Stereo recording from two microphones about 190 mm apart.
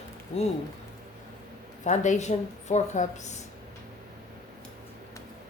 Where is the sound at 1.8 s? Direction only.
40° left (ahead or behind).